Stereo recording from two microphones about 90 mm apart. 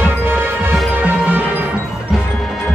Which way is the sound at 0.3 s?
25° right (ahead or behind).